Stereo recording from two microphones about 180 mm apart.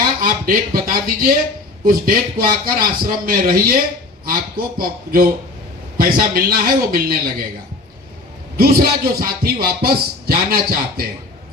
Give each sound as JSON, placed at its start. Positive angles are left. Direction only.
{"t": 0.2, "sound": "a man's voice", "side_deg": -50}
{"t": 8.5, "sound": "speech", "side_deg": -55}